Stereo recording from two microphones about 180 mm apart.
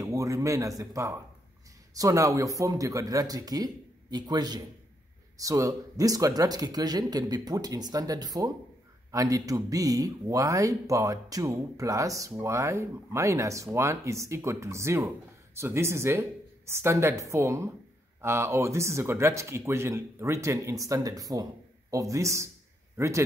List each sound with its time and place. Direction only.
0.0 s a man's voice: 20° right (ahead or behind)